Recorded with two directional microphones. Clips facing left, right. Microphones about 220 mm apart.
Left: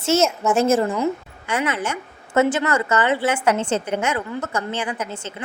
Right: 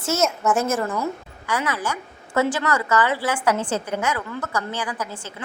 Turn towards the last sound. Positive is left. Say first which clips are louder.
# left 2 dB
turn(degrees=25)  # may be behind; listen again after turning